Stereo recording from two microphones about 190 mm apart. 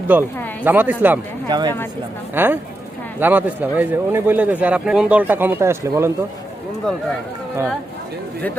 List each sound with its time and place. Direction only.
0.1 s a man's voice: 10° right (ahead or behind)
1.5 s speech: 20° right (ahead or behind)
2.3 s a man's voice: 10° right (ahead or behind)